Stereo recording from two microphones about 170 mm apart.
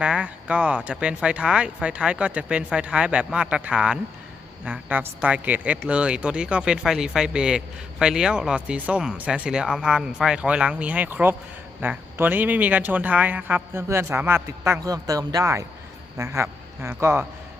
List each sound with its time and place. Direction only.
0.0 s speech: 5° right (ahead or behind)